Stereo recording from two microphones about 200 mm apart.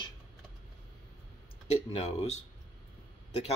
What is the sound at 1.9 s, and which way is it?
Speech, 35° left (ahead or behind).